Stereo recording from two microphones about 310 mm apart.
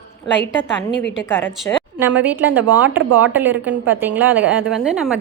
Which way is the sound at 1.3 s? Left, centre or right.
Centre.